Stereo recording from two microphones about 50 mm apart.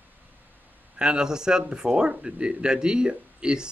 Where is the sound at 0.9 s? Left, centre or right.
Centre.